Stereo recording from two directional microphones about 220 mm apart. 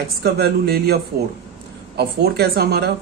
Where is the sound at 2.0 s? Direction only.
45° right (ahead or behind).